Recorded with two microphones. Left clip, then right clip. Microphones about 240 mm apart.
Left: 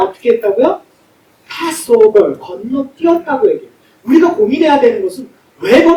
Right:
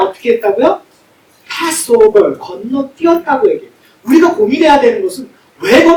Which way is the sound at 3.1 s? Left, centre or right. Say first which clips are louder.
Right 2 dB; centre.